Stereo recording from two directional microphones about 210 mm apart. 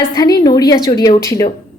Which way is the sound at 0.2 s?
15° left (ahead or behind).